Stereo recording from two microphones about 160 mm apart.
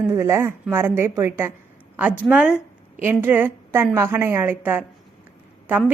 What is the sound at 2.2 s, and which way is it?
A woman's voice, 5° right (ahead or behind).